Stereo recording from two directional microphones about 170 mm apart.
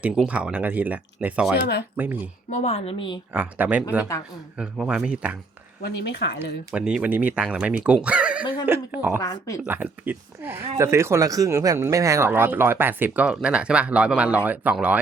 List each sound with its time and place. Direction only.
0.0 s speech: 5° right (ahead or behind)
2.5 s a woman's voice: 40° left (ahead or behind)
3.3 s speech: 10° right (ahead or behind)
5.8 s speech: 75° left (ahead or behind)
6.7 s speech: 5° right (ahead or behind)
9.2 s speech: 20° left (ahead or behind)
9.6 s speech: 10° right (ahead or behind)